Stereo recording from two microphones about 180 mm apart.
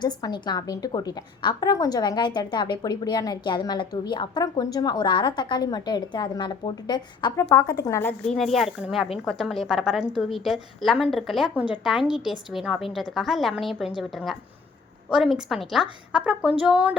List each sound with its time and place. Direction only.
0.0 s a woman's voice: 25° left (ahead or behind)
8.3 s a woman's voice: centre (ahead or behind)